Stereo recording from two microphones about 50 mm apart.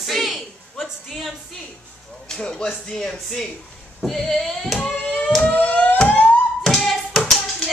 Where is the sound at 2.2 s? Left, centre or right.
Centre.